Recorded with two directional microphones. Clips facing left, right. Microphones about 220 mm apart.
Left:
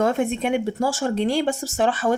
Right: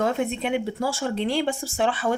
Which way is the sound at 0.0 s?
50° left (ahead or behind).